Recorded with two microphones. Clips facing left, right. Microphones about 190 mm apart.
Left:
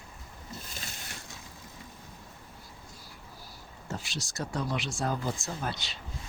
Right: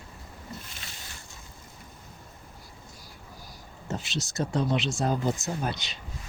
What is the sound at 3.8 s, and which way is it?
Speech, 20° right (ahead or behind).